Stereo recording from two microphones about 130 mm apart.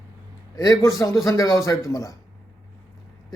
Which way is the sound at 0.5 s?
25° left (ahead or behind).